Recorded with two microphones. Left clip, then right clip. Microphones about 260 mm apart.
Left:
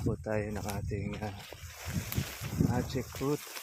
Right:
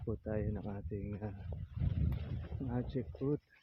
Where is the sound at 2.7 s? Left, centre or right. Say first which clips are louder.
Left 6 dB; centre.